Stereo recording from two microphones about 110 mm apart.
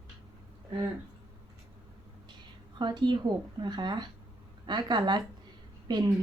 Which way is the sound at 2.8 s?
45° right (ahead or behind).